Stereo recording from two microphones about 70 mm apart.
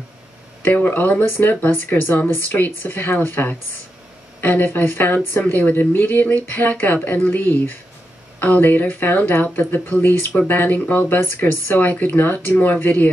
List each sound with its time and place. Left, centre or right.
0.6 s speech: left